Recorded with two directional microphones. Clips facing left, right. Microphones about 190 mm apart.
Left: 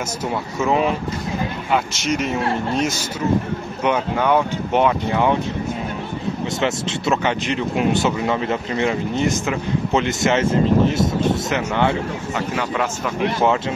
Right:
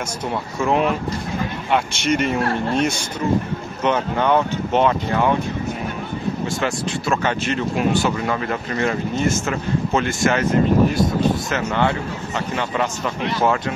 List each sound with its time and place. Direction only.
0.3 s speech: centre (ahead or behind)
6.6 s speech: 20° left (ahead or behind)
12.4 s speech: 5° left (ahead or behind)
13.4 s speech: 20° left (ahead or behind)